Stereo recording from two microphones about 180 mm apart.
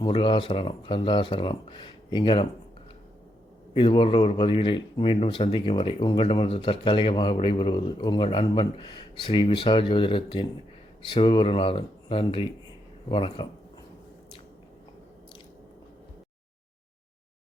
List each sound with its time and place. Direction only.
0.0 s speech: 25° left (ahead or behind)
3.8 s speech: 25° left (ahead or behind)